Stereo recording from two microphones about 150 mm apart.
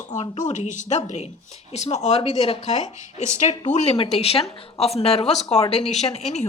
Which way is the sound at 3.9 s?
40° left (ahead or behind).